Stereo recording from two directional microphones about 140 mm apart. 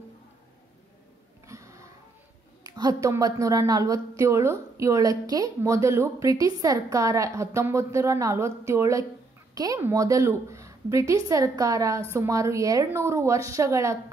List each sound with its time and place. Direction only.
1.5 s wheeze: 20° right (ahead or behind)
2.6 s a woman's voice: 25° right (ahead or behind)